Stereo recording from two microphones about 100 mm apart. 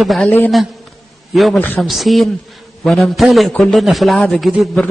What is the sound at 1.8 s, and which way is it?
A man's voice, centre (ahead or behind).